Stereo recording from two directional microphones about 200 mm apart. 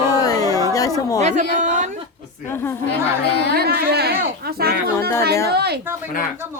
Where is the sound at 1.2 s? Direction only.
35° right (ahead or behind).